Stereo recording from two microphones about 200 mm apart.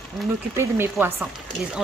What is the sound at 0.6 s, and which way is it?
Speech, 10° right (ahead or behind).